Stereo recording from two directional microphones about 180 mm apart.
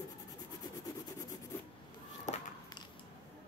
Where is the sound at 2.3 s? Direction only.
40° left (ahead or behind).